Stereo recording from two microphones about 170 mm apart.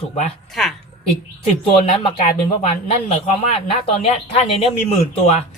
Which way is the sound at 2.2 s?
40° left (ahead or behind).